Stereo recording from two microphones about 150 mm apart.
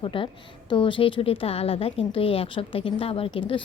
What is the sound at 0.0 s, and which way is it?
A woman's voice, 35° left (ahead or behind).